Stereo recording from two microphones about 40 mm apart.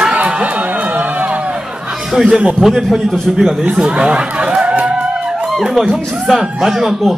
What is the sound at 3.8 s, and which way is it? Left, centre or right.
Speech, centre.